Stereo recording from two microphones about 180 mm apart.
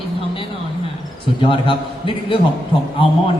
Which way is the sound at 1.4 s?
30° left (ahead or behind).